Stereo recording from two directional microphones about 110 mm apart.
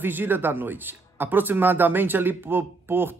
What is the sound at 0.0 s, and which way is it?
Speech, 20° right (ahead or behind).